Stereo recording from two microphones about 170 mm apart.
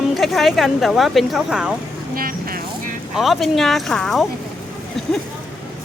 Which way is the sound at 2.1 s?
60° right (ahead or behind).